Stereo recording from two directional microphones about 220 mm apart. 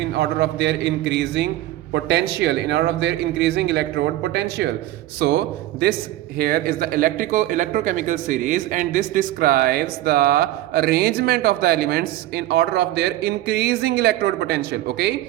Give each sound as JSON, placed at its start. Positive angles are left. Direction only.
{"t": 0.0, "sound": "a man's voice", "side_deg": -50}